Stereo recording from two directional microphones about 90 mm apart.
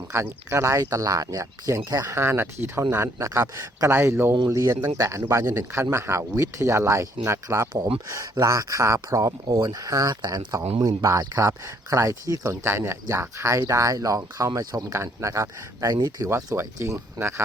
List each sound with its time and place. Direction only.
0.1 s speech: 30° right (ahead or behind); by 2.0 s 45° right (ahead or behind)
2.0 s speech: 25° right (ahead or behind); by 10.6 s 50° right (ahead or behind)
10.8 s speech: 40° right (ahead or behind)
14.9 s speech: 35° right (ahead or behind)
16.6 s speech: 30° right (ahead or behind)